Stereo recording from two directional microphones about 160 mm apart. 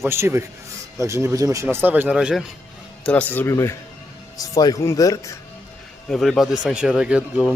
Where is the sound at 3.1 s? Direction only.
10° left (ahead or behind).